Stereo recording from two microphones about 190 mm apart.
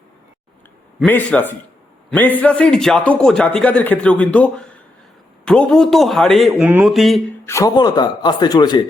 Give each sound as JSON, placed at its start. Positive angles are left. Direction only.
{"t": 1.0, "sound": "a man's voice", "side_deg": 10}
{"t": 7.4, "sound": "speech", "side_deg": 15}